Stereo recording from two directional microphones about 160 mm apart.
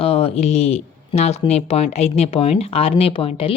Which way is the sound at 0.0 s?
35° left (ahead or behind).